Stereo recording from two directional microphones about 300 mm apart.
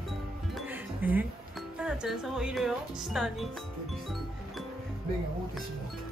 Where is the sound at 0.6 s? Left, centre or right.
Centre.